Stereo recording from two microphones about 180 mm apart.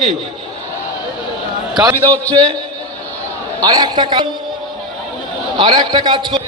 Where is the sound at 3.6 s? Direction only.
20° right (ahead or behind).